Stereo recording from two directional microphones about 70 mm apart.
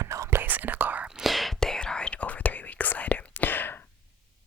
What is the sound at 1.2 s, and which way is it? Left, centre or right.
Whispering, centre.